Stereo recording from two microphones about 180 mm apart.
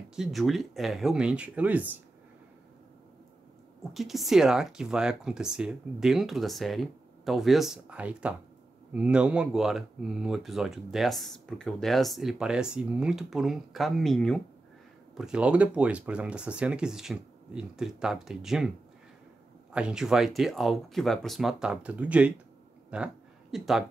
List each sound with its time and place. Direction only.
0.1 s speech: centre (ahead or behind)
3.9 s speech: centre (ahead or behind)
19.7 s a woman's voice: 5° right (ahead or behind)